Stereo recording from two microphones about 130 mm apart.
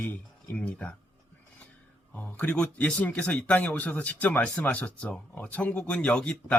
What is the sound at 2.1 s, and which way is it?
Speech, 10° left (ahead or behind).